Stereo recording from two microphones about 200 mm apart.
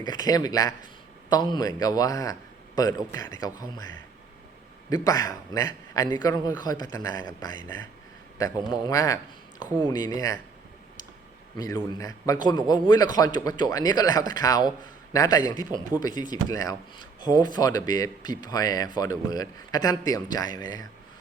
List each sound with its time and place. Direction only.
0.0 s speech: 20° left (ahead or behind)
5.0 s speech: 15° left (ahead or behind)
8.4 s speech: 20° left (ahead or behind)
11.5 s speech: 20° left (ahead or behind)